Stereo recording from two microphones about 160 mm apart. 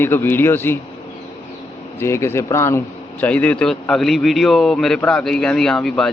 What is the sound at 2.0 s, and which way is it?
A man's voice, 15° left (ahead or behind).